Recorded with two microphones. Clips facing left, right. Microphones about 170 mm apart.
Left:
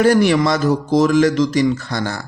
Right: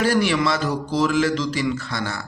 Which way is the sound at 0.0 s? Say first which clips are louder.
Left 6 dB; 45° left (ahead or behind).